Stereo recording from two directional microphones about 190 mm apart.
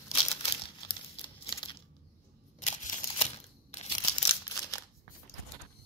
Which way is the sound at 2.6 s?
35° left (ahead or behind).